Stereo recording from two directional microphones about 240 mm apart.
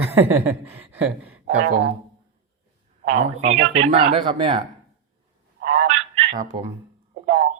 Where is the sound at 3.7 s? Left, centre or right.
Right.